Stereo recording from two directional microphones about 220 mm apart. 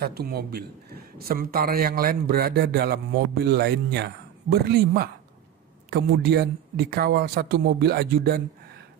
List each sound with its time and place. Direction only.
0.0 s a man's voice: 45° right (ahead or behind)